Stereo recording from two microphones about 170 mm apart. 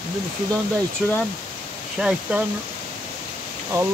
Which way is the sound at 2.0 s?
Centre (ahead or behind).